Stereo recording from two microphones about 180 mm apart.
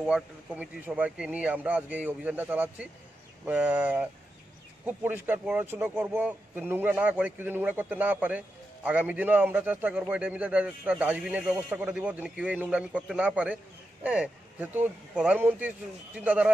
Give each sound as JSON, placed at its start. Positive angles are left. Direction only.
{"t": 0.0, "sound": "speech", "side_deg": -5}